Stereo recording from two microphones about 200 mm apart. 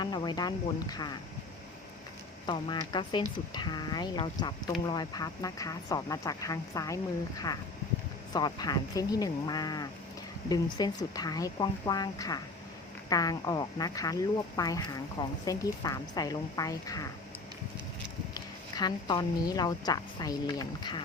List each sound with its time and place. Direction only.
0.0 s speech: 20° left (ahead or behind)
2.5 s speech: 25° left (ahead or behind)
18.3 s speech: 20° left (ahead or behind)